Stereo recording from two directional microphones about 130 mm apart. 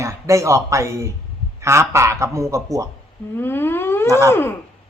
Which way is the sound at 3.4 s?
15° left (ahead or behind).